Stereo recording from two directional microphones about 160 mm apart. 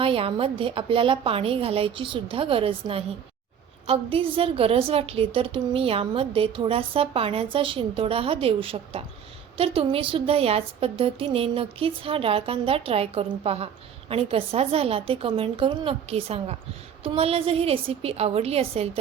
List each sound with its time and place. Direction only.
0.0 s a woman's voice: 35° right (ahead or behind)